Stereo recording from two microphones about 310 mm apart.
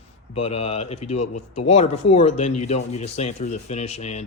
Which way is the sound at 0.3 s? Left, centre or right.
Centre.